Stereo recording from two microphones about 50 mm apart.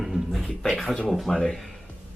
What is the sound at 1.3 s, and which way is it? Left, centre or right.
Speech, left.